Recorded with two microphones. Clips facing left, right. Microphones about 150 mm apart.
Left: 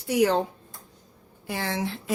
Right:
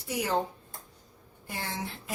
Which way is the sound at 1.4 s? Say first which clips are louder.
Left 7 dB; 90° left.